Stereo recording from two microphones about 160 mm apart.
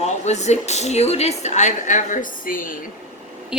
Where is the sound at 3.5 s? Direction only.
5° right (ahead or behind).